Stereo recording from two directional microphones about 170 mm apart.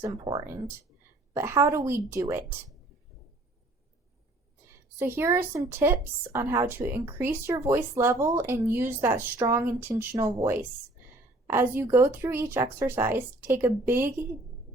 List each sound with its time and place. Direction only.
1.3 s a woman's voice: 15° right (ahead or behind)
4.9 s a woman's voice: 15° right (ahead or behind)